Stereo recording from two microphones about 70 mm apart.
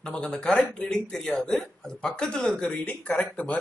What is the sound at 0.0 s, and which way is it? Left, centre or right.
Speech, centre.